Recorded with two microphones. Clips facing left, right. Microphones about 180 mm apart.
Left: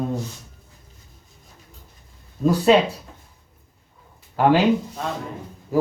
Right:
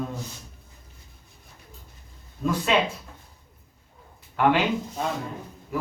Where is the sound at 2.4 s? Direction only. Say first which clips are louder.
Left 7 dB; 35° left (ahead or behind).